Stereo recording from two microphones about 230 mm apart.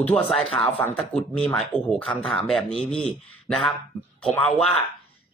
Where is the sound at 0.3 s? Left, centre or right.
Centre.